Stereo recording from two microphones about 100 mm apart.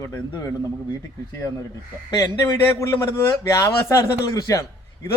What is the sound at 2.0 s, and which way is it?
Speech, 35° left (ahead or behind).